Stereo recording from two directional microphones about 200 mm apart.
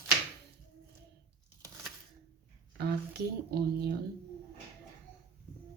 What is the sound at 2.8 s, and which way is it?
Speech, 55° right (ahead or behind).